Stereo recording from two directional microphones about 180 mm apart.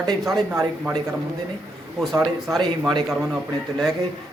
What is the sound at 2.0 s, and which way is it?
Speech, centre (ahead or behind).